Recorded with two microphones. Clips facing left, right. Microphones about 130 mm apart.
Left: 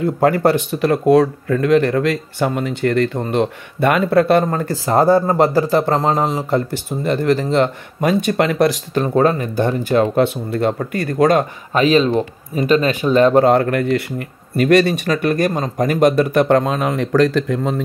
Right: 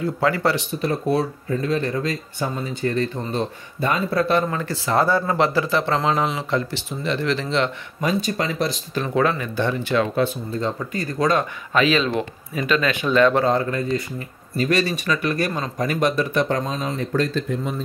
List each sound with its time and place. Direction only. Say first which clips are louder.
0.0 s speech: left 6 dB; 45° left (ahead or behind)
0.7 s speech: left 8 dB; 80° left
8.9 s speech: left 6 dB; 40° left (ahead or behind)
10.1 s speech: left 6 dB; 70° left (ahead or behind)
11.7 s speech: left 5 dB; 40° left (ahead or behind)
13.5 s speech: left 6 dB; 65° left (ahead or behind); by 17.8 s 90° left